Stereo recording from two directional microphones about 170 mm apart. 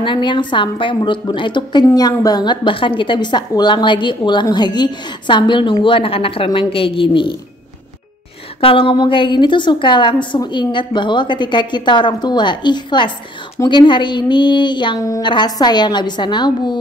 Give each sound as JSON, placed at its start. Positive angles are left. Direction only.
{"t": 0.0, "sound": "a woman's voice", "side_deg": 30}
{"t": 8.5, "sound": "a woman's voice", "side_deg": 30}